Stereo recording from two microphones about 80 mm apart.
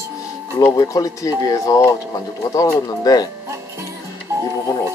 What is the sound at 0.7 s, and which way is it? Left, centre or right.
Speech, left.